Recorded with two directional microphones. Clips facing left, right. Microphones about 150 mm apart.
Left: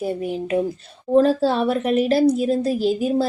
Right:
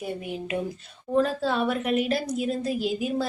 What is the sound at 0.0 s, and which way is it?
Speech, 35° left (ahead or behind).